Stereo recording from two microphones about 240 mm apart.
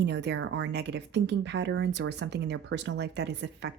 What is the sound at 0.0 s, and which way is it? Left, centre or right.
Speech, right.